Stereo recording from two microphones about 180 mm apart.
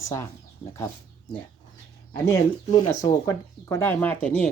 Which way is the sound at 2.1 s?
15° left (ahead or behind).